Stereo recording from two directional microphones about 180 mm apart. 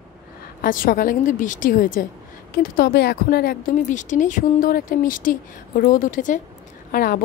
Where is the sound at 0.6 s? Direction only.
50° left (ahead or behind).